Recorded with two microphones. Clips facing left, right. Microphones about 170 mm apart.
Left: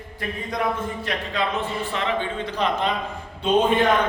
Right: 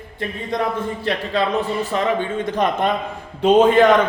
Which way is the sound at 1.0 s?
35° right (ahead or behind).